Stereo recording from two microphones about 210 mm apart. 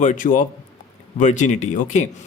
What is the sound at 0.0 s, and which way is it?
Speech, 40° left (ahead or behind).